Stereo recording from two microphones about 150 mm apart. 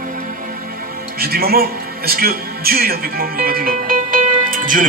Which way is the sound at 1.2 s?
90° right.